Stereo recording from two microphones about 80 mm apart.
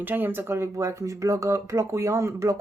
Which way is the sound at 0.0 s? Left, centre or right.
Right.